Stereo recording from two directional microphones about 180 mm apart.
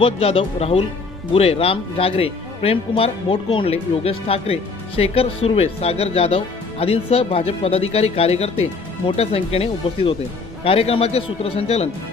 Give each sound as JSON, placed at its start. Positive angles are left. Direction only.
{"t": 0.0, "sound": "speech", "side_deg": 30}